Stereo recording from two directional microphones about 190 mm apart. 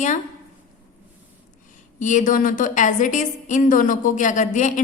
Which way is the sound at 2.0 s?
40° left (ahead or behind).